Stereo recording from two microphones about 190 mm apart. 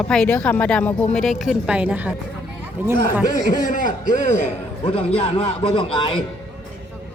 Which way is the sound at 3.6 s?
45° left (ahead or behind).